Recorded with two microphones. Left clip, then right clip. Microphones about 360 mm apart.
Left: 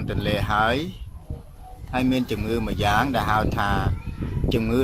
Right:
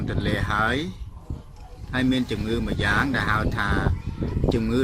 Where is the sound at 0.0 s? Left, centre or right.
Centre.